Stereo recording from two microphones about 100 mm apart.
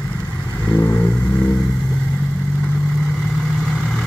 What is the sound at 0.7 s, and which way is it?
Vehicle, 25° left (ahead or behind).